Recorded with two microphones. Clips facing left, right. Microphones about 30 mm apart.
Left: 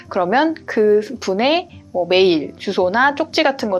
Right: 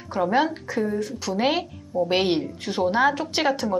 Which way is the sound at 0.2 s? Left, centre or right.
Left.